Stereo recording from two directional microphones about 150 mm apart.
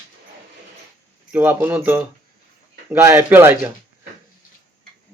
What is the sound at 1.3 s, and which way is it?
Speech, 10° right (ahead or behind).